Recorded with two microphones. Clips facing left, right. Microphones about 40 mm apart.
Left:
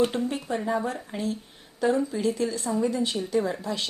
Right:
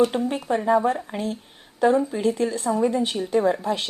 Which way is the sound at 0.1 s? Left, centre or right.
Right.